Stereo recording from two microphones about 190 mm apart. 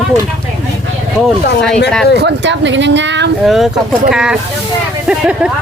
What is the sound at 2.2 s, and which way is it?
Speech, 65° right (ahead or behind).